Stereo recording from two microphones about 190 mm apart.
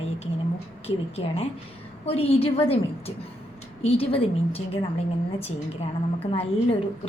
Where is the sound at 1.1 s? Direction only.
30° left (ahead or behind).